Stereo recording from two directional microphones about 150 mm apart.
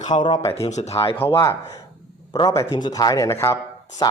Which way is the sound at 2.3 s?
25° left (ahead or behind).